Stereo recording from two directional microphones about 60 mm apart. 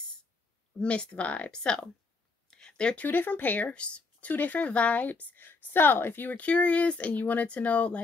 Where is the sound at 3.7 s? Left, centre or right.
Centre.